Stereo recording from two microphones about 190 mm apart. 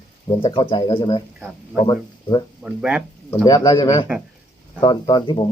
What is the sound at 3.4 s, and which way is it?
A man's voice, 20° left (ahead or behind).